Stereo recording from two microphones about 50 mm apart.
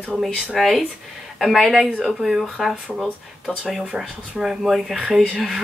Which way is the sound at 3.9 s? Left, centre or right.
Centre.